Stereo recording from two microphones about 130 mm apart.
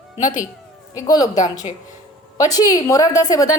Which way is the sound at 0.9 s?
30° left (ahead or behind).